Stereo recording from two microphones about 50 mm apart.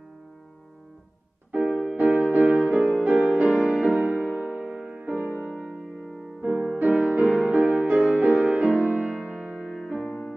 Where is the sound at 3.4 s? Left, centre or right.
Centre.